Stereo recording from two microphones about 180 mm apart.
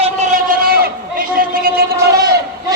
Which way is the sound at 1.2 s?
55° right (ahead or behind).